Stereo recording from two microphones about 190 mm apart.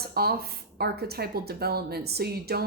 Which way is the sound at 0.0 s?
55° right (ahead or behind).